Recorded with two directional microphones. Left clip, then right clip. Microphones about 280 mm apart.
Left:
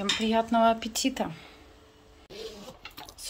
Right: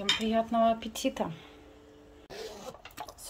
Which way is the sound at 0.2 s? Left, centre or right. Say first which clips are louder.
Left 3 dB; centre.